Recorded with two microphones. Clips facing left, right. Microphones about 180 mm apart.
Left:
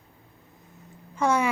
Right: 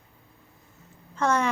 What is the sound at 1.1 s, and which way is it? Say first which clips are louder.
Speech: left 1 dB; 10° left (ahead or behind).